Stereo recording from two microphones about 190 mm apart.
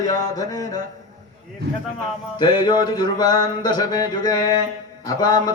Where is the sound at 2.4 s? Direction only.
25° left (ahead or behind).